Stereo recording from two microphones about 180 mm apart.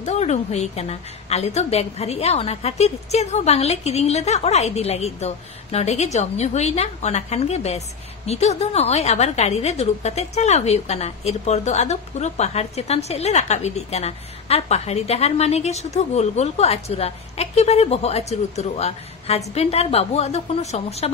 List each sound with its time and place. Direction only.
0.0 s a woman's voice: 40° left (ahead or behind)